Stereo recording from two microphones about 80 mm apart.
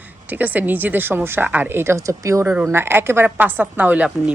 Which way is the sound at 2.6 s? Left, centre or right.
Right.